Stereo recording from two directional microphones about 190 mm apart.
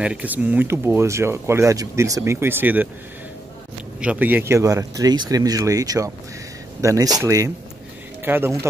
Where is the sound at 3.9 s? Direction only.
5° right (ahead or behind).